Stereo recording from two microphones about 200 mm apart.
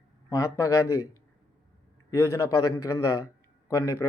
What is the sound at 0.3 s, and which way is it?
Speech, 15° left (ahead or behind).